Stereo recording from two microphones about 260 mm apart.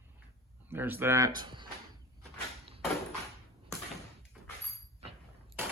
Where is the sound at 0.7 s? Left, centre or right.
Centre.